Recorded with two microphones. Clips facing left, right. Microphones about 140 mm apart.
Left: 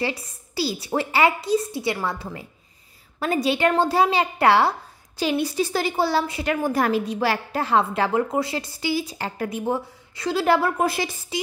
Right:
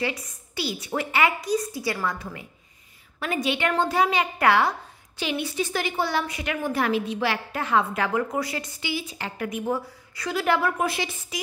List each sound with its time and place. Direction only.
0.0 s a woman's voice: 30° left (ahead or behind)